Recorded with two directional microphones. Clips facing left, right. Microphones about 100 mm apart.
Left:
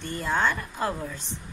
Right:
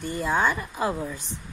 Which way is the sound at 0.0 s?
10° right (ahead or behind).